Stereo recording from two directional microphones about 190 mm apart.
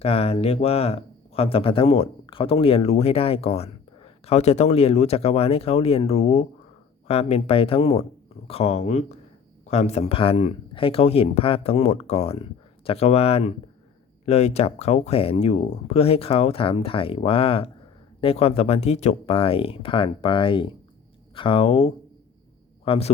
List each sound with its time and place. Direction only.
0.0 s speech: 30° left (ahead or behind)